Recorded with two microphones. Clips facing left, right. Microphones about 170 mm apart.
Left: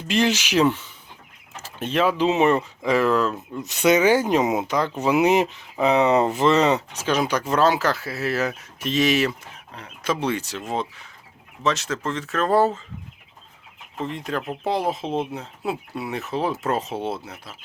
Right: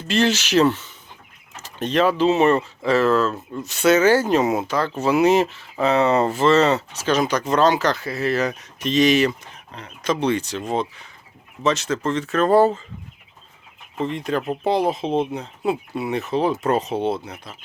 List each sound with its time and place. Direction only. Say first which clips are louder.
0.1 s speech: right 2 dB; 10° left (ahead or behind)
3.3 s speech: right 1 dB; centre (ahead or behind)
3.7 s speech: right 2 dB; 15° left (ahead or behind); by 12.8 s centre (ahead or behind)
14.0 s speech: right 4 dB; centre (ahead or behind)